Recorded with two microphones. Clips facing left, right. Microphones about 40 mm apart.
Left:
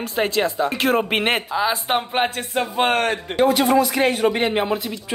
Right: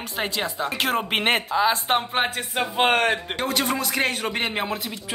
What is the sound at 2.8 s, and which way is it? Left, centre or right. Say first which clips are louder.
Speech: even; centre.